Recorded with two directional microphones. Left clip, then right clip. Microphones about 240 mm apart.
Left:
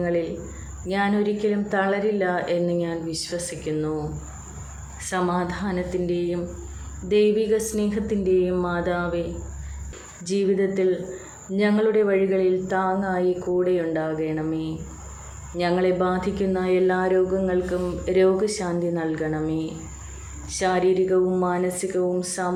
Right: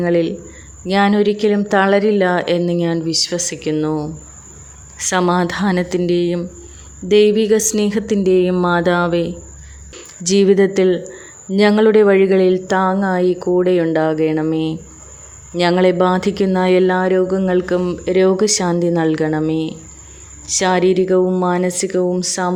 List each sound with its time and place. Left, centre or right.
0.0 s speech: right
10.2 s speech: right